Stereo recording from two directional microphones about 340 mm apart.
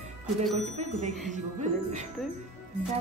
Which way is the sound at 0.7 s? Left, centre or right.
Centre.